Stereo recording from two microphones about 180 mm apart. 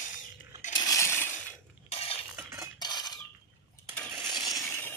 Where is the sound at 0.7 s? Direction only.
20° left (ahead or behind).